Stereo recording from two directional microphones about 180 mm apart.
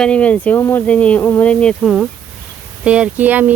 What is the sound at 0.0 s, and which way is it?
Speech, 5° left (ahead or behind).